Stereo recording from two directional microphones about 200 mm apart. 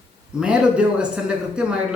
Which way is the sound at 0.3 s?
5° right (ahead or behind).